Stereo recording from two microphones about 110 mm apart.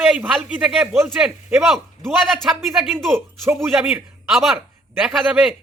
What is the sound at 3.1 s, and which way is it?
Speech, 25° right (ahead or behind).